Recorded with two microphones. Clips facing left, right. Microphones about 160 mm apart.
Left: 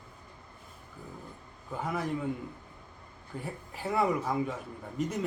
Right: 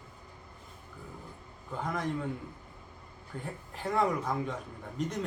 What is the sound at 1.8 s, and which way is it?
Speech, 5° left (ahead or behind).